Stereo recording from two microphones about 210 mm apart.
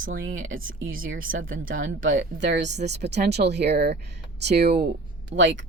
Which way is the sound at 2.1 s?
55° right (ahead or behind).